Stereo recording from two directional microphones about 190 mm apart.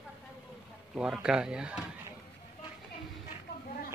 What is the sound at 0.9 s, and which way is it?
Speech, 5° right (ahead or behind).